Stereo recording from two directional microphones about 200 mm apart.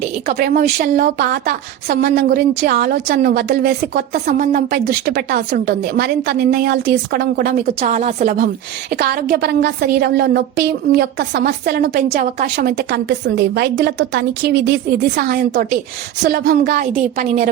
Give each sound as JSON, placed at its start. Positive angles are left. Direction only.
{"t": 0.3, "sound": "a woman's voice", "side_deg": -50}
{"t": 8.9, "sound": "a woman's voice", "side_deg": -50}
{"t": 16.8, "sound": "a woman's voice", "side_deg": -35}